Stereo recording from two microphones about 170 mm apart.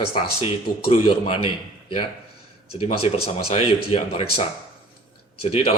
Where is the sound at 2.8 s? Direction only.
35° left (ahead or behind).